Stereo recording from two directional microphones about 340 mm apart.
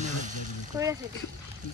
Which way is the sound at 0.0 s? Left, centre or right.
Right.